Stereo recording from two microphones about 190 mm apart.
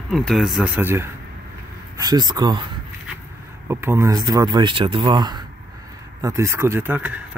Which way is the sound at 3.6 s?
15° right (ahead or behind).